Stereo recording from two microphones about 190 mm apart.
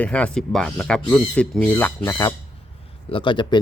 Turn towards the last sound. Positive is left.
turn(degrees=25)  # may be behind; listen again after turning